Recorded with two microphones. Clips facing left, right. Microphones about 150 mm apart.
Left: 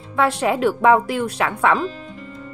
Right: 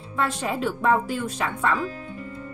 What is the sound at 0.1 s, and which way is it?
Speech, 75° left (ahead or behind).